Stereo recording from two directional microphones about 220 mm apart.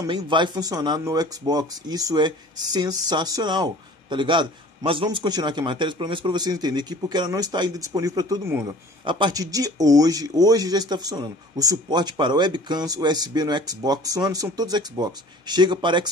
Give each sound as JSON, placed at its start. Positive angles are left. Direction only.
{"t": 0.0, "sound": "speech", "side_deg": -20}